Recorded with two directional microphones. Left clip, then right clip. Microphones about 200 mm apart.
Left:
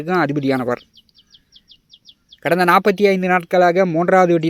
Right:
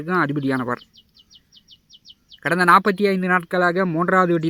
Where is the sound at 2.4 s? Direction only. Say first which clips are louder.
Left 1 dB; 20° left (ahead or behind).